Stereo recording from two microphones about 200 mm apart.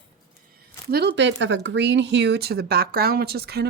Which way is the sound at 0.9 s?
55° right (ahead or behind).